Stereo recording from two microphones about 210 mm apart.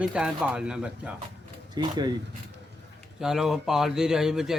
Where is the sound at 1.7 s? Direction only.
20° right (ahead or behind).